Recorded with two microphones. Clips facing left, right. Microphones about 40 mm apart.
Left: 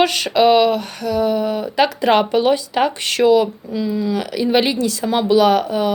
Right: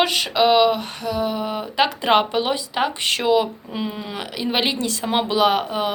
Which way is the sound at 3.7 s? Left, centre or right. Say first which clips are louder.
Left 8 dB; right.